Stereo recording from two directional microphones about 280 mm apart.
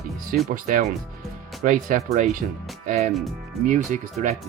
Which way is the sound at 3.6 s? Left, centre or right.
Right.